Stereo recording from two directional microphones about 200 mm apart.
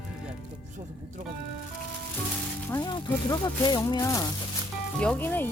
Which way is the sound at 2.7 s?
20° left (ahead or behind).